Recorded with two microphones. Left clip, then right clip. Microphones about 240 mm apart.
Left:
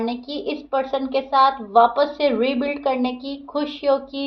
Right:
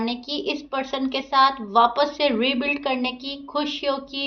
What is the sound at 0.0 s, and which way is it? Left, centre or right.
A woman's voice, right.